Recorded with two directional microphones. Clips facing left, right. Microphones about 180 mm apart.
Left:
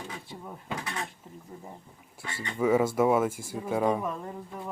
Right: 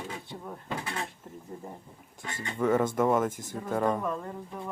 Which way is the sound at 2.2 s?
10° left (ahead or behind).